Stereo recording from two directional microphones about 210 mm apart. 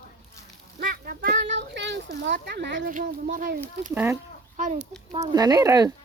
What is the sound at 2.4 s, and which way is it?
Speech, 55° right (ahead or behind).